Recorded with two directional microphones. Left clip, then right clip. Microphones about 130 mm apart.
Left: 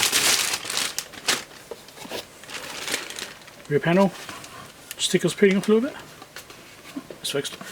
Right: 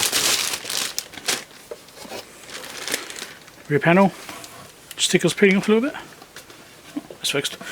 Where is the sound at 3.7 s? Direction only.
35° right (ahead or behind).